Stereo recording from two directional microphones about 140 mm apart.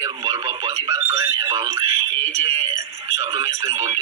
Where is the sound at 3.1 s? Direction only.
20° right (ahead or behind).